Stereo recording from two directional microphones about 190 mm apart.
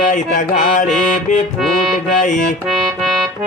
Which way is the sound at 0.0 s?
45° left (ahead or behind).